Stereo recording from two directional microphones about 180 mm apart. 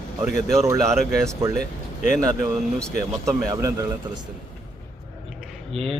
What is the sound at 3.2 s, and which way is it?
Speech, 15° right (ahead or behind).